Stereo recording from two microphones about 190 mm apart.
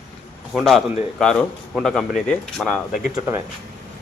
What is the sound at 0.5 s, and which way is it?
A man's voice, centre (ahead or behind).